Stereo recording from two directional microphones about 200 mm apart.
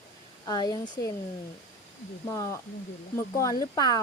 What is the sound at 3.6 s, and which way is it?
Speech, 20° left (ahead or behind).